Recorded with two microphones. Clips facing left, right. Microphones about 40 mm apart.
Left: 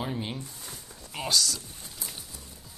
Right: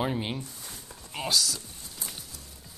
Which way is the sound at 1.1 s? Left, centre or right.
Centre.